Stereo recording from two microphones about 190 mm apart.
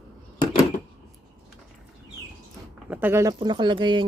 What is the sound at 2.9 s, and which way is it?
Speech, 10° right (ahead or behind).